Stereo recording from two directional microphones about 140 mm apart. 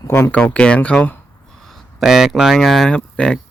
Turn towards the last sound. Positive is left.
turn(degrees=5)  # may be behind; listen again after turning